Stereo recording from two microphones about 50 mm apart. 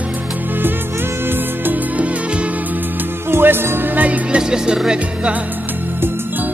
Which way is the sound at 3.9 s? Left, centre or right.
Right.